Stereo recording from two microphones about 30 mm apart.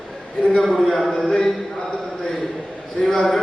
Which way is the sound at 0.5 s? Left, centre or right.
Centre.